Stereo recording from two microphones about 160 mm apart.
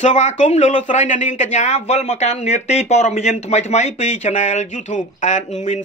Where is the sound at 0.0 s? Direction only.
45° left (ahead or behind).